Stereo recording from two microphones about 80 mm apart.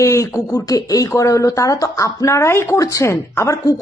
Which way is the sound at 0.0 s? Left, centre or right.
Left.